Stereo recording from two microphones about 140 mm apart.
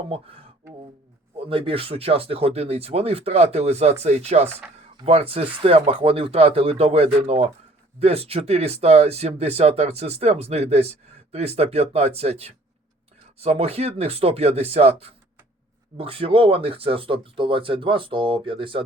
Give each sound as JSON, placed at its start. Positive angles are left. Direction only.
{"t": 0.1, "sound": "speech", "side_deg": -45}
{"t": 1.5, "sound": "speech", "side_deg": -40}